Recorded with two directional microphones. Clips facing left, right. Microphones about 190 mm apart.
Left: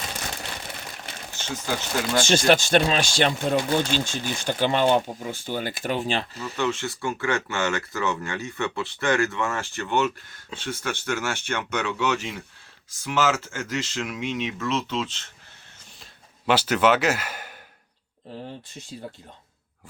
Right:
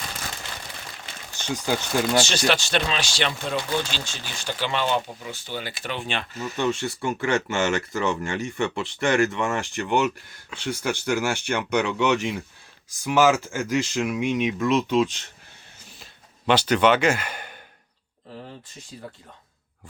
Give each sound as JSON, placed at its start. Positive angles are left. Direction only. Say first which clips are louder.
{"t": 1.4, "sound": "speech", "louder": "right 4 dB", "side_deg": -15}
{"t": 2.1, "sound": "speech", "louder": "left 7 dB", "side_deg": 50}
{"t": 6.6, "sound": "speech", "louder": "right 1 dB", "side_deg": -15}
{"t": 16.5, "sound": "speech", "louder": "right 1 dB", "side_deg": 5}